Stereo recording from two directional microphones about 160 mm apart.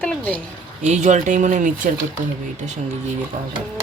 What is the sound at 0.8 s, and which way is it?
Speech, 45° right (ahead or behind).